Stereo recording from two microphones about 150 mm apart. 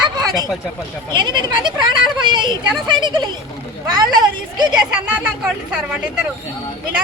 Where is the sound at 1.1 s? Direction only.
30° right (ahead or behind).